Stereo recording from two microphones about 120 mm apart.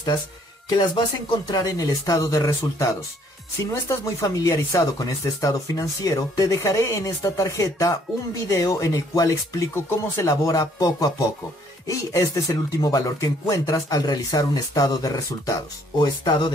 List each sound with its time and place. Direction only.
0.7 s speech: 35° left (ahead or behind)